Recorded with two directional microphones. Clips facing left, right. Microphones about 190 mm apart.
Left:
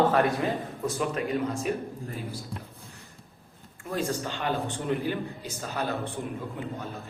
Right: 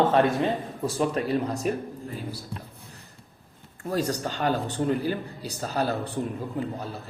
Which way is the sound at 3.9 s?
40° right (ahead or behind).